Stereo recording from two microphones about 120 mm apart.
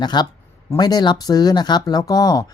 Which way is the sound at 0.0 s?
35° left (ahead or behind).